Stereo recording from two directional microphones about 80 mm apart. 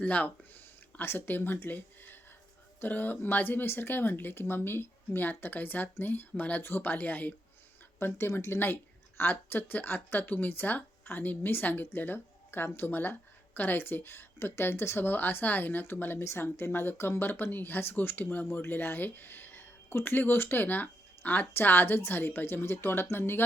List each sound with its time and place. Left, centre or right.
0.0 s speech: centre